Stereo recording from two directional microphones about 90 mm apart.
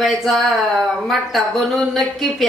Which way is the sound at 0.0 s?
Centre (ahead or behind).